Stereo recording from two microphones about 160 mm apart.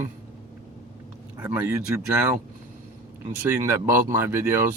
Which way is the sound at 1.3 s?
10° right (ahead or behind).